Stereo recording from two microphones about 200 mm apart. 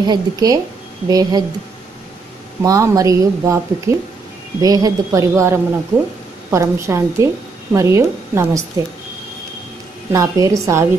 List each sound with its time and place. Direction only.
0.0 s speech: 20° right (ahead or behind)
2.6 s speech: 15° right (ahead or behind)
10.1 s speech: 15° right (ahead or behind)